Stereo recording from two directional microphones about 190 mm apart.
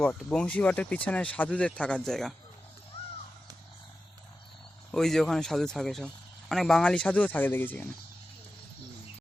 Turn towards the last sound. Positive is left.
turn(degrees=10)  # may be behind; listen again after turning